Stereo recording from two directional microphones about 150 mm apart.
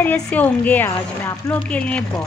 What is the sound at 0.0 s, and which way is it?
Speech, 10° left (ahead or behind).